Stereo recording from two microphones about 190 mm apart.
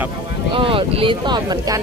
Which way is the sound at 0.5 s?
30° right (ahead or behind).